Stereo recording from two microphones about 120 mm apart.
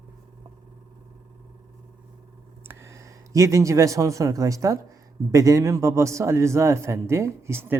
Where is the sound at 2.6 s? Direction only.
25° right (ahead or behind).